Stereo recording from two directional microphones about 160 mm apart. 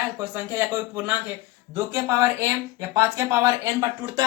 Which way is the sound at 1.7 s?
15° right (ahead or behind).